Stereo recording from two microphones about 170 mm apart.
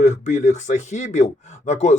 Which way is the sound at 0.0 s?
40° left (ahead or behind).